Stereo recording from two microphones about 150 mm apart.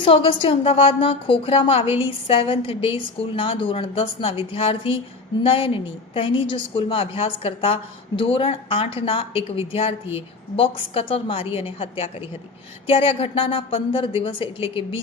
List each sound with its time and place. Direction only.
0.0 s a woman's voice: 35° left (ahead or behind)